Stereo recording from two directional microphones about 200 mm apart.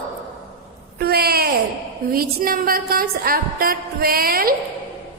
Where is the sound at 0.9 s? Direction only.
50° right (ahead or behind).